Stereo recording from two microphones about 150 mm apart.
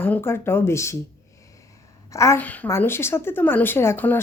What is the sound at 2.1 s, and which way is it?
A woman's voice, 20° left (ahead or behind).